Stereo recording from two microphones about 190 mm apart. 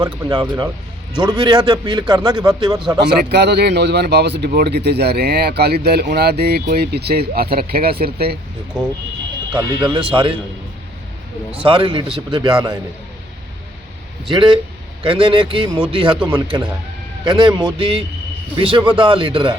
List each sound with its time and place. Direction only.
0.0 s speech: 25° right (ahead or behind)
3.3 s speech: 60° right (ahead or behind)
8.7 s speech: 5° right (ahead or behind)
9.5 s speech: 25° right (ahead or behind)
11.6 s speech: 25° right (ahead or behind)
14.3 s speech: 25° right (ahead or behind)